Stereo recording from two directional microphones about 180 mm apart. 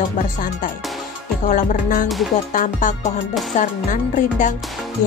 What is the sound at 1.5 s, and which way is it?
Speech, 45° left (ahead or behind).